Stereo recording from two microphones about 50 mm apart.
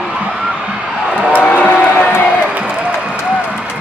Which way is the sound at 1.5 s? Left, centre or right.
Left.